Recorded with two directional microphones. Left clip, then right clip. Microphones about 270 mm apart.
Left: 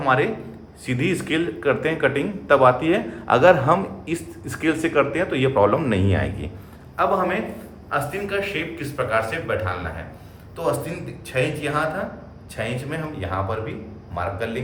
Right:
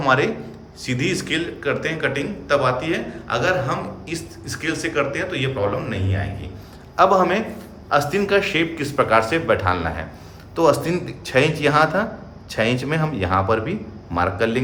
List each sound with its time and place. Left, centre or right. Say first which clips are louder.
0.0 s a man's voice: right 2 dB; centre
6.9 s a man's voice: right 5 dB; centre
8.3 s a man's voice: right 7 dB; right